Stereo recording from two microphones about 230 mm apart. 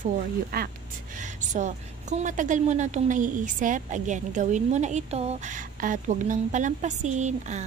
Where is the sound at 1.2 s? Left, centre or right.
Right.